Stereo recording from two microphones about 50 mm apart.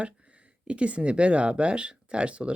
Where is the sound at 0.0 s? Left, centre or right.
Right.